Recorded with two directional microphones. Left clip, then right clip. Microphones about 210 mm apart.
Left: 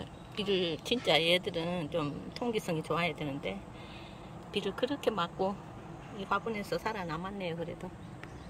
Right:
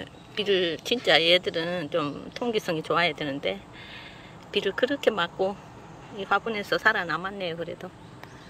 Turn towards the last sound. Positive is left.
turn(degrees=5)  # may be behind; listen again after turning